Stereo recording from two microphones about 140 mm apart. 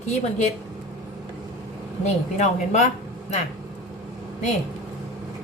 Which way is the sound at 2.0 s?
55° left (ahead or behind).